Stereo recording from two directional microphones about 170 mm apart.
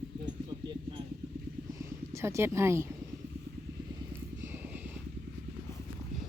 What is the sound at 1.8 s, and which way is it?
Speech, 15° right (ahead or behind).